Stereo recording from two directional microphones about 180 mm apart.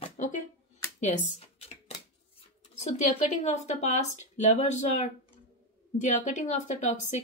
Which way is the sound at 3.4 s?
40° left (ahead or behind).